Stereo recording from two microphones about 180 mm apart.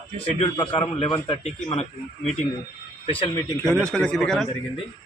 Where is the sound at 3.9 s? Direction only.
5° left (ahead or behind).